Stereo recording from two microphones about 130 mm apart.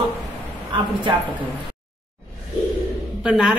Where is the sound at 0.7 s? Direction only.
40° right (ahead or behind).